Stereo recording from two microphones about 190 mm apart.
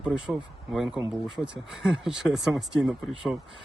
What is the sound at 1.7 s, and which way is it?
Speech, centre (ahead or behind).